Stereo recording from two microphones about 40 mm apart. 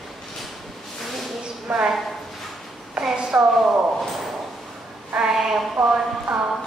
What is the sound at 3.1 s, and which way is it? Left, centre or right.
Speech, right.